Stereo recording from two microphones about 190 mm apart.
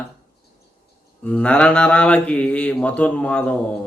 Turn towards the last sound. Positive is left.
turn(degrees=5)  # may be behind; listen again after turning